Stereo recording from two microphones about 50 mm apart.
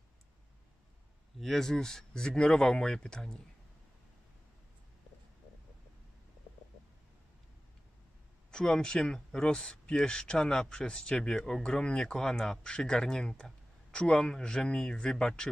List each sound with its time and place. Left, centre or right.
1.4 s speech: centre
8.5 s speech: centre